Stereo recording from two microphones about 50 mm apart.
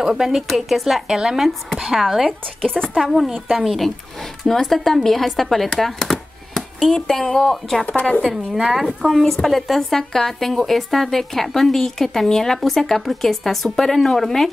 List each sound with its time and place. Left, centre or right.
0.0 s speech: centre
2.6 s a woman's voice: centre
3.1 s speech: centre
7.8 s speech: left
8.2 s speech: centre